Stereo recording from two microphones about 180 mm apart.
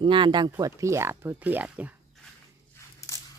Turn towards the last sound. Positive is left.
turn(degrees=15)  # may be behind; listen again after turning